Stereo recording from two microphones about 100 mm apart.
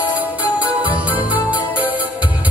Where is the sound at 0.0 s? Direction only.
15° right (ahead or behind).